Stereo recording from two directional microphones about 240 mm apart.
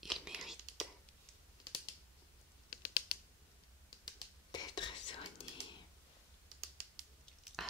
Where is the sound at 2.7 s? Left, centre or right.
Left.